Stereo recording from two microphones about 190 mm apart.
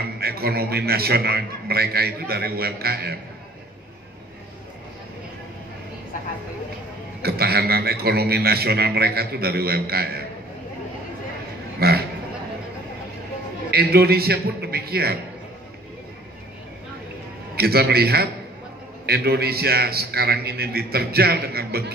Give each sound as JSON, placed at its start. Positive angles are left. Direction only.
{"t": 0.2, "sound": "a man's voice", "side_deg": -55}
{"t": 7.2, "sound": "a man's voice", "side_deg": -55}
{"t": 11.8, "sound": "speech", "side_deg": -55}
{"t": 13.7, "sound": "a man's voice", "side_deg": -55}
{"t": 17.6, "sound": "a man's voice", "side_deg": -55}